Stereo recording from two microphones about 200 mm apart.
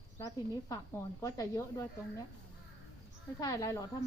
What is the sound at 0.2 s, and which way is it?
Speech, 15° left (ahead or behind).